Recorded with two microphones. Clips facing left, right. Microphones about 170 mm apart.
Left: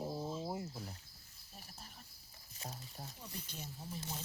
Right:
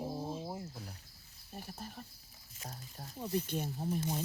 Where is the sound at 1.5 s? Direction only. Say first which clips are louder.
Right 10 dB; 60° right (ahead or behind).